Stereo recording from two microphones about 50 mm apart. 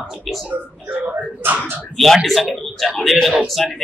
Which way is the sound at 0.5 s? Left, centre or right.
Right.